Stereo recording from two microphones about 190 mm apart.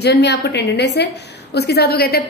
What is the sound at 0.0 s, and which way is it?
A woman's voice, 60° left (ahead or behind).